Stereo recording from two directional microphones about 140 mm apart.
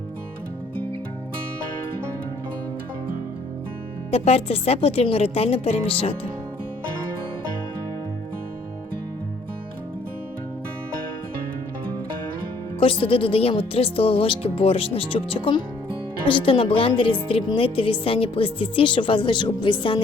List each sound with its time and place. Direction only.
4.1 s speech: 45° left (ahead or behind)
12.8 s speech: 40° left (ahead or behind)